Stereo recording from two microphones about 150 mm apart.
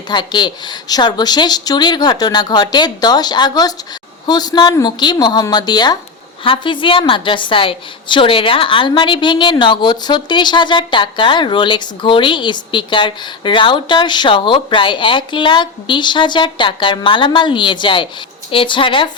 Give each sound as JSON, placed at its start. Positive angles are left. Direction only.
{"t": 0.1, "sound": "a woman's voice", "side_deg": 30}